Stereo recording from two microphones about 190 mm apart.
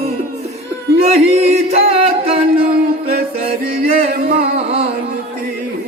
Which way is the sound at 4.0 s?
35° right (ahead or behind).